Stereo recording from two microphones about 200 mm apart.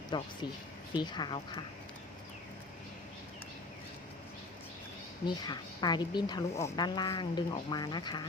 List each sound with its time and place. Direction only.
0.1 s a woman's voice: 20° left (ahead or behind)
5.2 s a woman's voice: 20° left (ahead or behind)